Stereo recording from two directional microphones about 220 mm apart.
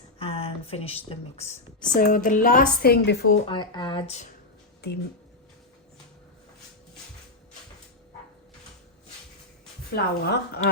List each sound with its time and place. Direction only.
0.2 s speech: 25° left (ahead or behind)
1.9 s a woman's voice: 40° left (ahead or behind)
3.4 s speech: 20° left (ahead or behind)
9.9 s a woman's voice: 50° left (ahead or behind)